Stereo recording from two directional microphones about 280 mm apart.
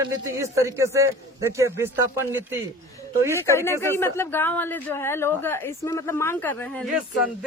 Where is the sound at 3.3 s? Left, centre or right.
Centre.